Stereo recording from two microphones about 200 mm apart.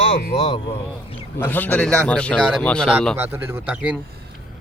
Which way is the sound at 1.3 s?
10° left (ahead or behind).